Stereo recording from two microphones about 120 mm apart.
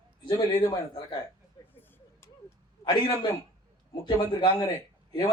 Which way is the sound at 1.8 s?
20° left (ahead or behind).